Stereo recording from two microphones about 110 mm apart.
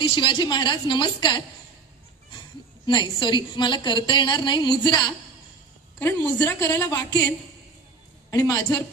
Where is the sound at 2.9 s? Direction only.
45° left (ahead or behind).